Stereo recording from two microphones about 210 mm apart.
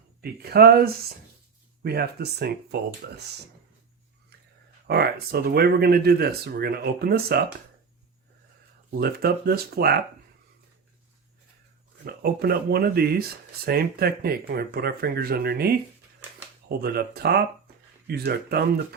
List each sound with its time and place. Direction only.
0.2 s speech: 45° right (ahead or behind)
4.9 s speech: 50° right (ahead or behind)
9.0 s speech: 45° right (ahead or behind)
12.0 s speech: 50° right (ahead or behind)
16.8 s speech: 50° right (ahead or behind)